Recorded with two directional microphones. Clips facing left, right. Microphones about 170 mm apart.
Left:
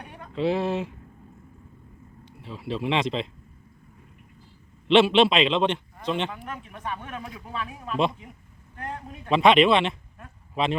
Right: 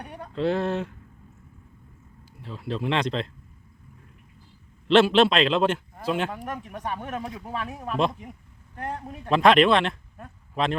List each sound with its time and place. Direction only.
0.0 s a sound: 40° right (ahead or behind)
0.3 s a man's voice: 5° left (ahead or behind)
2.4 s a man's voice: centre (ahead or behind)
4.9 s a man's voice: centre (ahead or behind)
6.3 s speech: 40° right (ahead or behind)
9.3 s a man's voice: centre (ahead or behind)